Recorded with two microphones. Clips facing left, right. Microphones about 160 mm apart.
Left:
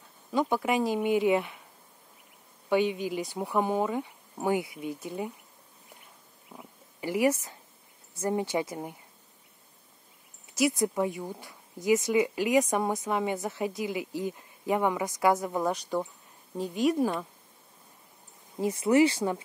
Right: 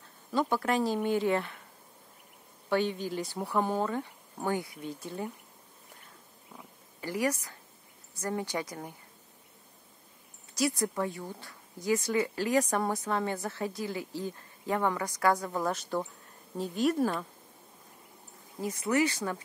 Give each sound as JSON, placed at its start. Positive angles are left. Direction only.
{"t": 0.5, "sound": "speech", "side_deg": 10}
{"t": 2.7, "sound": "speech", "side_deg": 10}
{"t": 6.5, "sound": "a sound", "side_deg": 15}
{"t": 8.2, "sound": "speech", "side_deg": 20}
{"t": 10.5, "sound": "speech", "side_deg": 20}
{"t": 16.5, "sound": "speech", "side_deg": 0}
{"t": 16.9, "sound": "speech", "side_deg": 15}
{"t": 18.6, "sound": "speech", "side_deg": 25}